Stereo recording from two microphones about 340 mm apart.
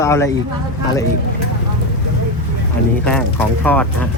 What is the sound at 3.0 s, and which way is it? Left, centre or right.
Speech, centre.